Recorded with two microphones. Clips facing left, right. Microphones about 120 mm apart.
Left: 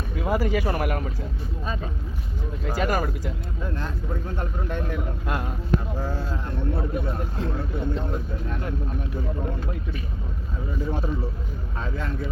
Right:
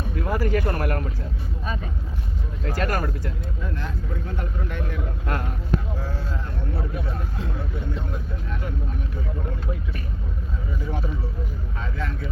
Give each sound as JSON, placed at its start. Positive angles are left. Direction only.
{"t": 0.2, "sound": "speech", "side_deg": 15}
{"t": 2.7, "sound": "speech", "side_deg": 15}